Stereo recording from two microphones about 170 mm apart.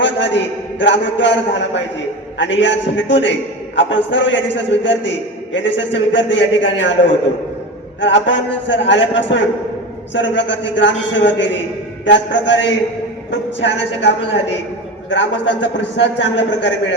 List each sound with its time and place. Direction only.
0.0 s a man's voice: 90° left
8.0 s a man's voice: 90° left